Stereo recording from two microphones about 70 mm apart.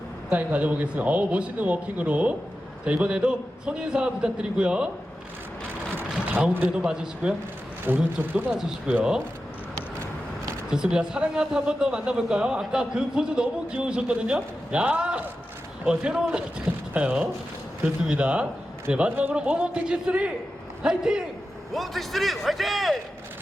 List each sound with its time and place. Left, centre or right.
0.3 s a man's voice: right
6.8 s a man's voice: centre
7.9 s speech: right
8.9 s a man's voice: centre
10.7 s a man's voice: centre
21.7 s a man's voice: centre